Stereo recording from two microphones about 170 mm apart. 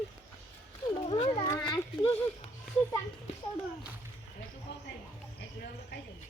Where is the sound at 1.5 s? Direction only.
20° left (ahead or behind).